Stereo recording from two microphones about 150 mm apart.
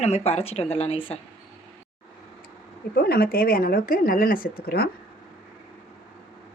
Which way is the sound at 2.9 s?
90° left.